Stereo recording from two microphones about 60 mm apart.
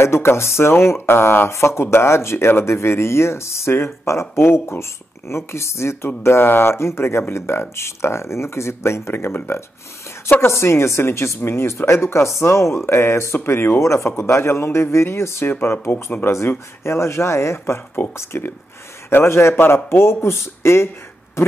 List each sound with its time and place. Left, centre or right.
0.0 s speech: left
16.3 s speech: left